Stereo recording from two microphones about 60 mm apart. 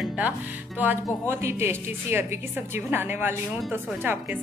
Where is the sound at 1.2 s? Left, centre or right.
Right.